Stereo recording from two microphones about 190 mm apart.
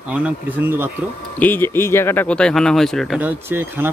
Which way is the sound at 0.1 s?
10° right (ahead or behind).